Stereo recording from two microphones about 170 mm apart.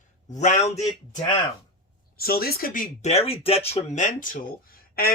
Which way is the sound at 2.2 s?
60° left (ahead or behind).